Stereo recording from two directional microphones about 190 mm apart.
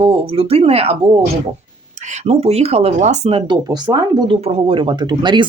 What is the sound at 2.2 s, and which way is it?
Speech, 30° right (ahead or behind).